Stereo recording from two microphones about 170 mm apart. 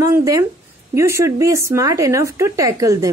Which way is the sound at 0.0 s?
20° right (ahead or behind).